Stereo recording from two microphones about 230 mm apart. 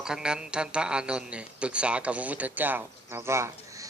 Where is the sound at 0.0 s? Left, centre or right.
Centre.